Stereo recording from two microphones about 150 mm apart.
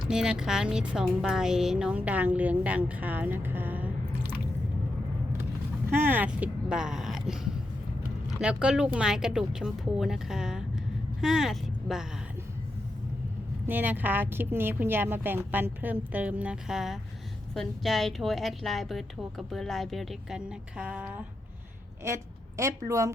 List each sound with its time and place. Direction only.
0.1 s speech: 5° right (ahead or behind)
5.9 s a woman's voice: 15° right (ahead or behind)
13.7 s a woman's voice: 10° right (ahead or behind)